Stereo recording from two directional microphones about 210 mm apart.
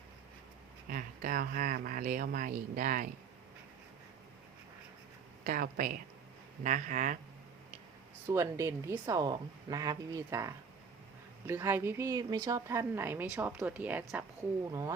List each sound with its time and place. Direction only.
0.9 s speech: 40° right (ahead or behind)
5.5 s speech: 45° right (ahead or behind)
8.3 s a woman's voice: 15° right (ahead or behind)